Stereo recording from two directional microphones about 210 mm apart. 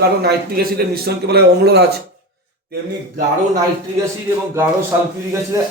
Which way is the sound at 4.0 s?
10° right (ahead or behind).